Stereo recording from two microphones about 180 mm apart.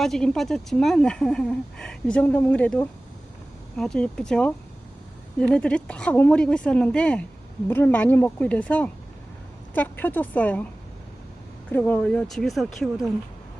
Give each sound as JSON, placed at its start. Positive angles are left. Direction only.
{"t": 0.0, "sound": "speech", "side_deg": 0}
{"t": 11.7, "sound": "speech", "side_deg": 10}